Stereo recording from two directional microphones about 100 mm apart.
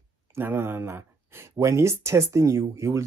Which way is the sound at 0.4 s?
20° right (ahead or behind).